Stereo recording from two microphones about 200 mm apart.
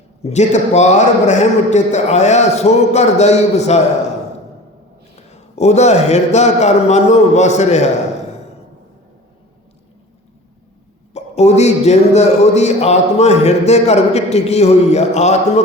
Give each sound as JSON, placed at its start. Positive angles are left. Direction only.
{"t": 0.2, "sound": "a man's voice", "side_deg": 35}
{"t": 5.1, "sound": "a man's voice", "side_deg": 35}
{"t": 11.1, "sound": "a man's voice", "side_deg": 35}